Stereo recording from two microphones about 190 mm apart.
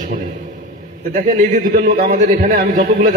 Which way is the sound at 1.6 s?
40° right (ahead or behind).